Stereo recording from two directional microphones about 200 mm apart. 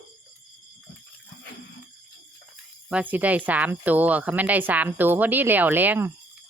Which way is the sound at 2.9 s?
10° right (ahead or behind).